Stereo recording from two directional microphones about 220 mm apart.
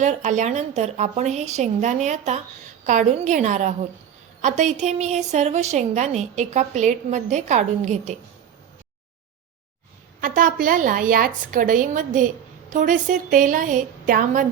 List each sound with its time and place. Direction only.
0.0 s a woman's voice: 35° right (ahead or behind)
10.2 s a woman's voice: 40° right (ahead or behind)